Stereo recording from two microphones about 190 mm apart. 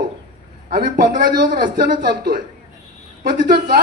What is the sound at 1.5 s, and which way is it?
A man's voice, 50° right (ahead or behind).